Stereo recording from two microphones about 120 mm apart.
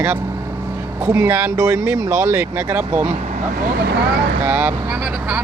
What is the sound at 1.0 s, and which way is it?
Speech, 20° right (ahead or behind).